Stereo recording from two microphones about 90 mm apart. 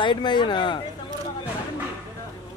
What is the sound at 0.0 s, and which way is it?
Speech, 60° left (ahead or behind).